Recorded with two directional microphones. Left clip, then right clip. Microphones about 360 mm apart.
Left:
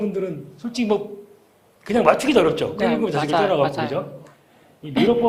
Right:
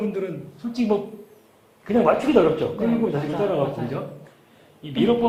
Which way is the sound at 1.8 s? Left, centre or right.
Centre.